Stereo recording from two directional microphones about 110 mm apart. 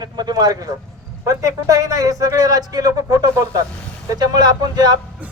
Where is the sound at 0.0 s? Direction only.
40° right (ahead or behind).